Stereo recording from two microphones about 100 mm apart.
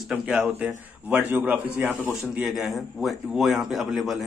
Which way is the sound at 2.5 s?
Centre (ahead or behind).